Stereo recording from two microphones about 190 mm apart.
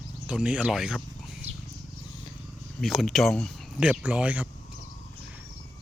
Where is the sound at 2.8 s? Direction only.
Centre (ahead or behind).